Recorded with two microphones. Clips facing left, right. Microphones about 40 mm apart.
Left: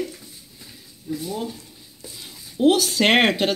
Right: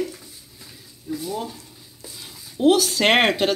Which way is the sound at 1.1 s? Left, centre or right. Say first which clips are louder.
Even; centre.